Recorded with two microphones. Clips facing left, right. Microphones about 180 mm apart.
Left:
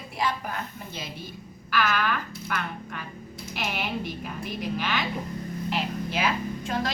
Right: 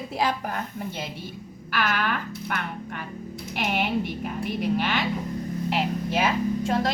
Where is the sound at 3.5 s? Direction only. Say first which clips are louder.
Right 5 dB; 55° right (ahead or behind).